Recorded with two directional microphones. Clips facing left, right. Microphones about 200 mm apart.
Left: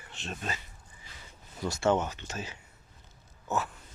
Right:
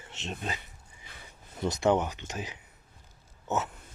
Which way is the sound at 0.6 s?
60° right (ahead or behind).